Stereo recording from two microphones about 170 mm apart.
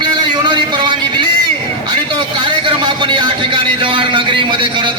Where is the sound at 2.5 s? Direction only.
30° right (ahead or behind).